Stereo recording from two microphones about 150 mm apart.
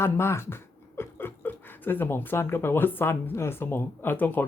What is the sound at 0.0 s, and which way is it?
Speech, 15° left (ahead or behind).